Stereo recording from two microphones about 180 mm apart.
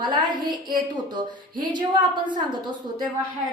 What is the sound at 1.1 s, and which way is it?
A woman's voice, 25° right (ahead or behind).